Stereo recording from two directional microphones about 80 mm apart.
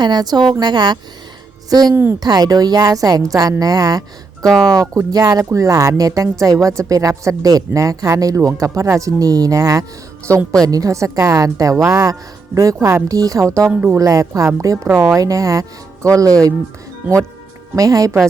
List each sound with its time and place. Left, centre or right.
0.0 s a woman's voice: right
13.7 s speech: right
14.0 s speech: right
17.7 s speech: right